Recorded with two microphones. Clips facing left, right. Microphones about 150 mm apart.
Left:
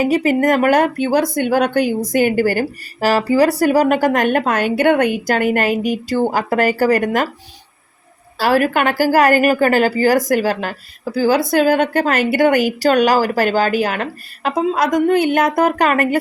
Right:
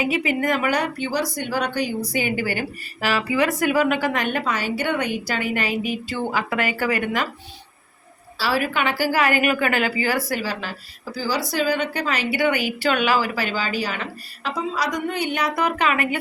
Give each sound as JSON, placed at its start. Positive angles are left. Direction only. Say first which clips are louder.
{"t": 0.0, "sound": "a woman's voice", "louder": "left 8 dB", "side_deg": 40}
{"t": 8.4, "sound": "a woman's voice", "louder": "left 8 dB", "side_deg": 50}